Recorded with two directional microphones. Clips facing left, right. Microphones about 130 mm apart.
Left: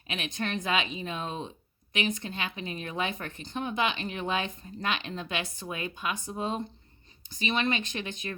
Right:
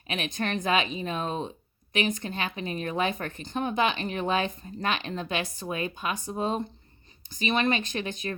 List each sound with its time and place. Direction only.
0.1 s a woman's voice: 45° right (ahead or behind)